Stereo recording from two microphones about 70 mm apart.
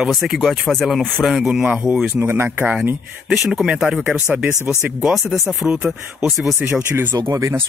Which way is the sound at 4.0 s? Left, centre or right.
Right.